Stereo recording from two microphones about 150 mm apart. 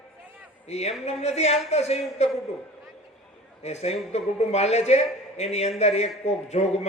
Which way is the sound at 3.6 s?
45° left (ahead or behind).